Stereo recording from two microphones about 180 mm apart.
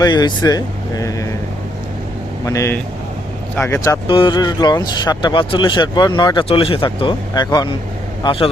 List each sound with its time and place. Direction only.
0.0 s speech: 25° left (ahead or behind)
2.4 s speech: 15° left (ahead or behind)
4.0 s speech: 25° left (ahead or behind)